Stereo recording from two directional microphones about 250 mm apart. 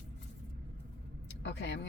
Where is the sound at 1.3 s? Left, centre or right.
Left.